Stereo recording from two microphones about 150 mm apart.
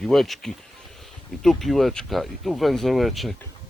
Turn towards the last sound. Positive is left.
turn(degrees=0)  # may be behind; listen again after turning